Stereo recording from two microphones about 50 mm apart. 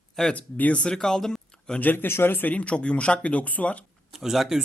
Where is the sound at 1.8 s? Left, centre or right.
Left.